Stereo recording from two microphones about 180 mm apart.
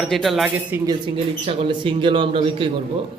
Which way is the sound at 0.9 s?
30° right (ahead or behind).